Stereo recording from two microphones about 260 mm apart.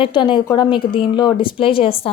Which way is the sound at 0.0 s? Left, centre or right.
Centre.